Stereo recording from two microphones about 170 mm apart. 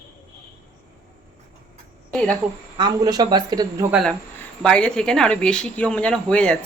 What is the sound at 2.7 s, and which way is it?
Speech, 25° right (ahead or behind).